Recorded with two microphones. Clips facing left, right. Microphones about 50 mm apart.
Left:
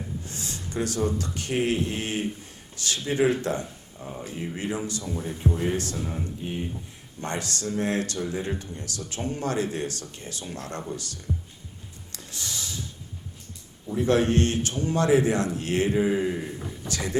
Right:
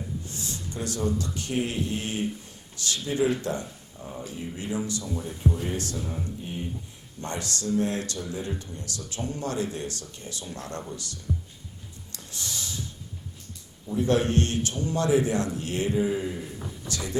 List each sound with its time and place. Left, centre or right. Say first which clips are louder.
0.3 s speech: even; left
3.7 s speech: left 1 dB; centre
4.2 s speech: left 3 dB; left
7.2 s speech: left 2 dB; left
12.1 s a sound: left 1 dB; left
13.9 s speech: left 2 dB; left